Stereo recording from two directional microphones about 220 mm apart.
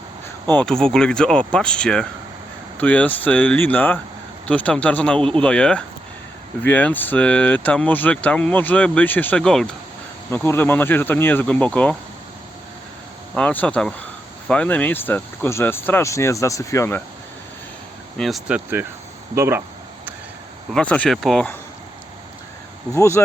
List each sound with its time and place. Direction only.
0.5 s speech: 5° left (ahead or behind)
13.3 s speech: 5° left (ahead or behind)
18.2 s speech: centre (ahead or behind)
20.7 s speech: 5° left (ahead or behind)
23.0 s speech: 10° left (ahead or behind)